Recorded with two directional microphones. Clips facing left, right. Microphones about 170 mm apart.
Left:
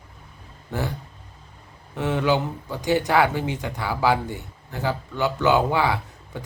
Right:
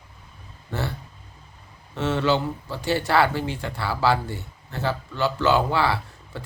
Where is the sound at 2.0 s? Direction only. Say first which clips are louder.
Even; 15° left (ahead or behind).